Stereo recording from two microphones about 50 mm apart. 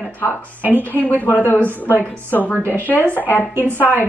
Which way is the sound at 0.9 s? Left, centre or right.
Left.